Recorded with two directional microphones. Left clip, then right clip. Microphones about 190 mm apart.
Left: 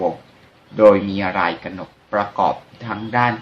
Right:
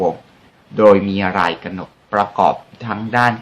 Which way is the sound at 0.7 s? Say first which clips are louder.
Right 1 dB; 55° right (ahead or behind).